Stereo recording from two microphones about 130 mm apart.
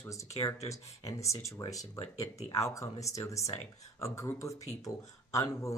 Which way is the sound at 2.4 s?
55° left (ahead or behind).